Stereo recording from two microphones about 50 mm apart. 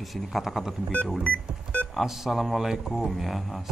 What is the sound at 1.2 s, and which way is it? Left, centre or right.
Music, left.